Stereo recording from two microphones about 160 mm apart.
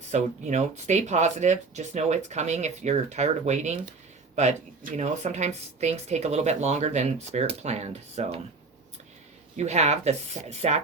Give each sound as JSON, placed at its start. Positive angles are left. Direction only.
{"t": 0.1, "sound": "speech", "side_deg": -45}
{"t": 9.6, "sound": "speech", "side_deg": -45}